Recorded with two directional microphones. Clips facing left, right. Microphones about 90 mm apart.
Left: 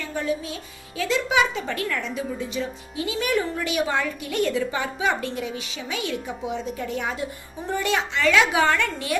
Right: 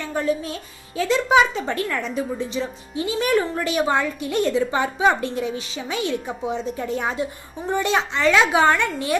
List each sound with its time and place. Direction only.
0.9 s a woman's voice: 35° right (ahead or behind)